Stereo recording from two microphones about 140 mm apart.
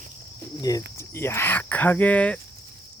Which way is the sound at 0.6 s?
25° left (ahead or behind).